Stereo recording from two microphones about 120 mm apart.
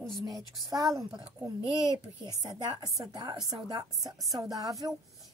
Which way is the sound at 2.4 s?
35° right (ahead or behind).